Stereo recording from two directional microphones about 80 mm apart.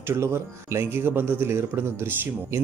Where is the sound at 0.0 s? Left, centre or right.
Right.